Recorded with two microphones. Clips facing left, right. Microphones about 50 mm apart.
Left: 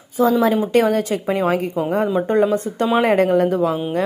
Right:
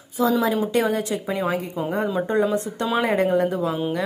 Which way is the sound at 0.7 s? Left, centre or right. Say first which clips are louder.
Left 5 dB; left.